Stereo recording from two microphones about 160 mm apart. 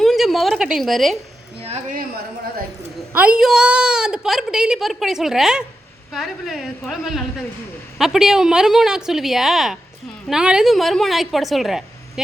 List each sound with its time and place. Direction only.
0.0 s a sound: centre (ahead or behind)
1.6 s a woman's voice: 40° right (ahead or behind)
3.1 s a woman's voice: 10° right (ahead or behind)